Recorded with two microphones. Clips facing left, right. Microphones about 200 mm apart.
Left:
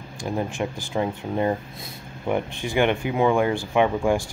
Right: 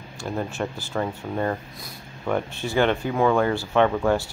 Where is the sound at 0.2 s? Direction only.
15° left (ahead or behind).